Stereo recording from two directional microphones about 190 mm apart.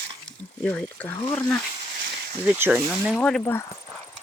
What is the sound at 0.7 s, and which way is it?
Speech, 10° left (ahead or behind).